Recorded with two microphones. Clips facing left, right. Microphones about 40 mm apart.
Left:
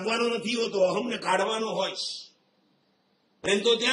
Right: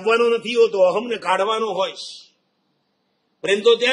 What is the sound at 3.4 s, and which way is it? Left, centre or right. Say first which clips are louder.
Speech: right 8 dB; right.